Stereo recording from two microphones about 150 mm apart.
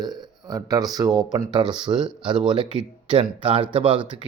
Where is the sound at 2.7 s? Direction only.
35° right (ahead or behind).